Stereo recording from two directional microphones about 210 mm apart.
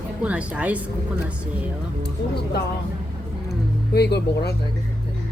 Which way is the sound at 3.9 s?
50° left (ahead or behind).